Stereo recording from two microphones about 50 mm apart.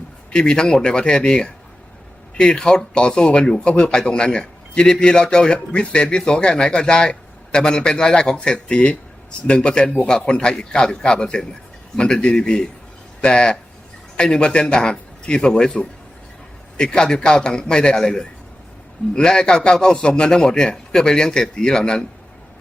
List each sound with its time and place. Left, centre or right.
0.3 s a man's voice: centre